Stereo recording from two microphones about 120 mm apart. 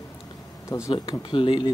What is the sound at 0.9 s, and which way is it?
Speech, 40° left (ahead or behind).